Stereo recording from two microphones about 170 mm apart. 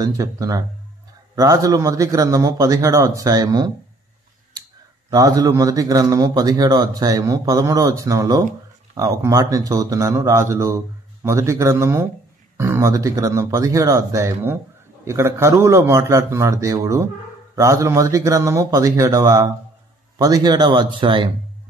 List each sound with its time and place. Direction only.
0.0 s a man's voice: 20° right (ahead or behind)
5.1 s a man's voice: 20° right (ahead or behind)